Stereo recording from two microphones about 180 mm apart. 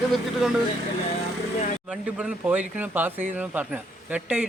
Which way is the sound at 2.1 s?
10° right (ahead or behind).